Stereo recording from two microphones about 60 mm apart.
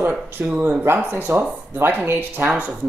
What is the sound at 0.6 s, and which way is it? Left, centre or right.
Speech, right.